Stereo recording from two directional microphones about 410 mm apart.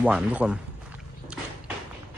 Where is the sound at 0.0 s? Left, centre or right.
Centre.